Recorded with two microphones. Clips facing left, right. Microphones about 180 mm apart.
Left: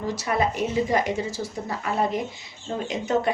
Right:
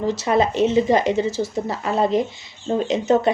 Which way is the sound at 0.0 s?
25° right (ahead or behind).